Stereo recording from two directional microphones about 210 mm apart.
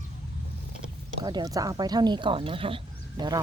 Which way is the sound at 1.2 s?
20° right (ahead or behind).